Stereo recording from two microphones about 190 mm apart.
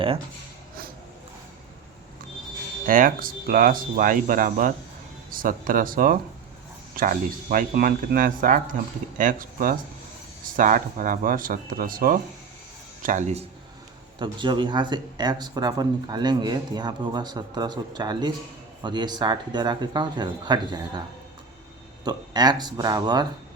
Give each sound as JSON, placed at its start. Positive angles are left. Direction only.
{"t": 2.8, "sound": "speech", "side_deg": -45}
{"t": 14.2, "sound": "speech", "side_deg": -25}
{"t": 22.0, "sound": "speech", "side_deg": -20}